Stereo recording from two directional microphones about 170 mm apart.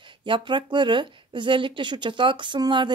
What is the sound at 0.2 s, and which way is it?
A woman's voice, 30° right (ahead or behind).